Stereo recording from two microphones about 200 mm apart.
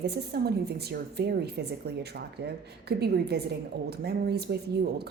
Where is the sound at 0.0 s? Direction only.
55° right (ahead or behind).